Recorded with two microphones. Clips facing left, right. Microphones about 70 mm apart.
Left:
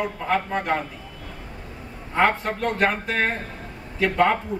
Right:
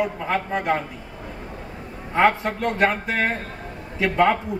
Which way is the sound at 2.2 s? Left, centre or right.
Centre.